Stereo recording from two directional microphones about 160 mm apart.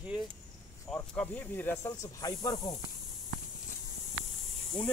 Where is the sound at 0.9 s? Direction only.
5° left (ahead or behind); by 2.7 s 20° left (ahead or behind).